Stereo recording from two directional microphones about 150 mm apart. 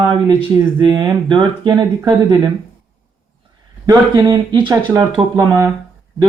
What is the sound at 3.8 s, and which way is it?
Speech, 25° right (ahead or behind).